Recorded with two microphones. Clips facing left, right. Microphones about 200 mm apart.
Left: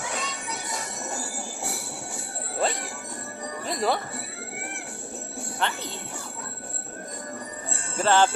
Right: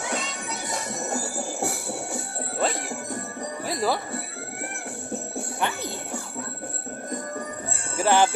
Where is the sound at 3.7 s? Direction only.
Centre (ahead or behind).